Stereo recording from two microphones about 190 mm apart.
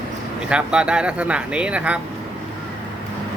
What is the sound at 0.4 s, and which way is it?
Speech, 5° right (ahead or behind).